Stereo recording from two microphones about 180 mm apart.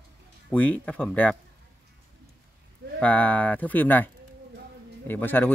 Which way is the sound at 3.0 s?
5° left (ahead or behind).